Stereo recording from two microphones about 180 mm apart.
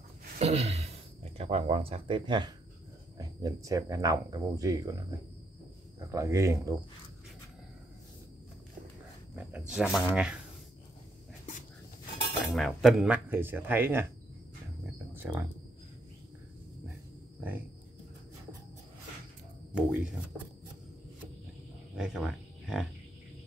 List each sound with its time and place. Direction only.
0.4 s a sound: 35° right (ahead or behind)
3.2 s speech: 20° right (ahead or behind)
9.3 s speech: centre (ahead or behind)
12.4 s speech: centre (ahead or behind)
15.1 s speech: 10° right (ahead or behind)
17.4 s speech: 10° right (ahead or behind)
19.7 s speech: 5° right (ahead or behind)
21.9 s speech: 5° right (ahead or behind)